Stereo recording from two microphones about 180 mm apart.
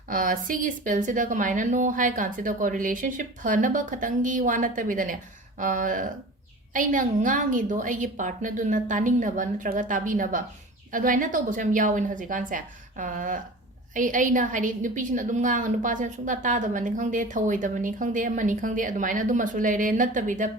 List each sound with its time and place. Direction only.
0.1 s a woman's voice: 50° right (ahead or behind)